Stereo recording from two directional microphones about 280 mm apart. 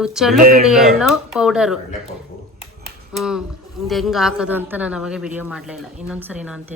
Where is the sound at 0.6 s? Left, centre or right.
Centre.